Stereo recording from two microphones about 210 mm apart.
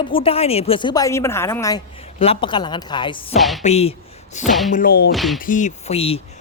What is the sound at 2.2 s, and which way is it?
Speech, 25° left (ahead or behind).